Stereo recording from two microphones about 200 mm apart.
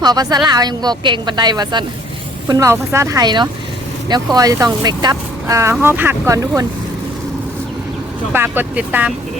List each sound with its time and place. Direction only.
0.0 s a woman's voice: 20° right (ahead or behind)
8.3 s speech: 10° right (ahead or behind)